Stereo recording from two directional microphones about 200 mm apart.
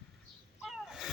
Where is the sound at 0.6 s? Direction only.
Centre (ahead or behind).